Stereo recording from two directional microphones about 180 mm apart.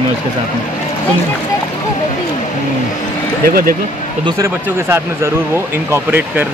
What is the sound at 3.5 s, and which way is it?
Speech, 50° right (ahead or behind).